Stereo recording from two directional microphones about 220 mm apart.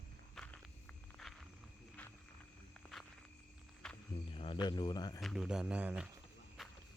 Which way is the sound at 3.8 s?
5° left (ahead or behind).